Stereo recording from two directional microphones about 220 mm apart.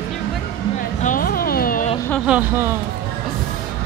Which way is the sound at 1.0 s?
40° left (ahead or behind).